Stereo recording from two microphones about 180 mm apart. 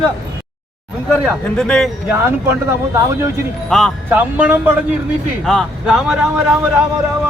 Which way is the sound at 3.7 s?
Centre (ahead or behind).